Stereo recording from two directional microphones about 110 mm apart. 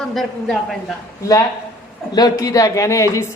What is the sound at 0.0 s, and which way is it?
Speech, 5° left (ahead or behind).